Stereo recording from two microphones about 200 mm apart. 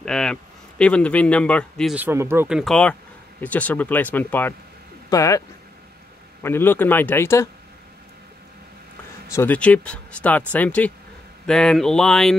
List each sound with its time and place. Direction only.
0.0 s a man's voice: 5° left (ahead or behind)
2.0 s speech: 10° right (ahead or behind); by 5.4 s 15° left (ahead or behind)
6.4 s speech: 10° left (ahead or behind)
9.3 s speech: 10° left (ahead or behind)